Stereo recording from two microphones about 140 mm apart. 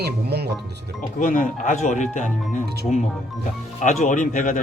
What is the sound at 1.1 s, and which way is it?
Speech, 70° left (ahead or behind).